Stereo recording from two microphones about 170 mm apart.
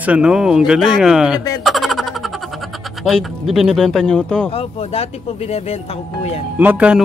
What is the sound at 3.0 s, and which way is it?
Speech, centre (ahead or behind).